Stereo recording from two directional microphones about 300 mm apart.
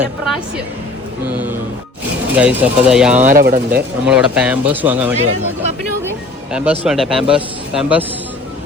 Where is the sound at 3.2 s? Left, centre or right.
Right.